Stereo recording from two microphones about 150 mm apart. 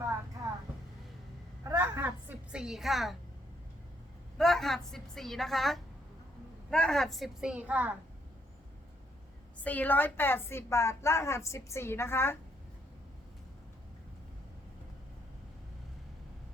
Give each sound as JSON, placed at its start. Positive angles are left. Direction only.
{"t": 1.6, "sound": "a sound", "side_deg": -20}
{"t": 4.4, "sound": "a woman's voice", "side_deg": 0}
{"t": 9.6, "sound": "a woman's voice", "side_deg": 10}